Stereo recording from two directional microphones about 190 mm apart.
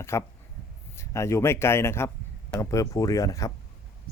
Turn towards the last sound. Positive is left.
turn(degrees=20)  # may be behind; listen again after turning